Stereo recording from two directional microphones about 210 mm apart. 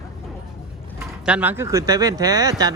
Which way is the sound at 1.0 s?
5° right (ahead or behind).